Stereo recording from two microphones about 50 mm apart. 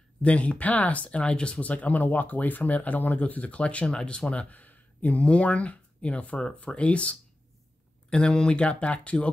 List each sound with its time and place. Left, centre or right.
0.2 s speech: left
1.6 s speech: left